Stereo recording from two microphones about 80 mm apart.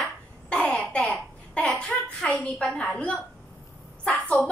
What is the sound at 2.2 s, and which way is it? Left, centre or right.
Speech, centre.